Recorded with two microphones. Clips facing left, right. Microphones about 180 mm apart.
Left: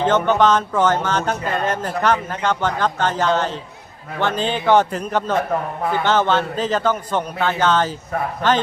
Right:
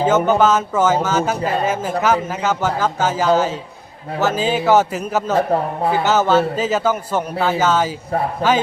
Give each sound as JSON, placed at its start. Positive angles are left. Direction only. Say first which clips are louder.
{"t": 0.0, "sound": "a man's voice", "louder": "right 2 dB", "side_deg": -5}
{"t": 5.4, "sound": "speech", "louder": "right 4 dB", "side_deg": -30}
{"t": 5.9, "sound": "a man's voice", "louder": "right 2 dB", "side_deg": -5}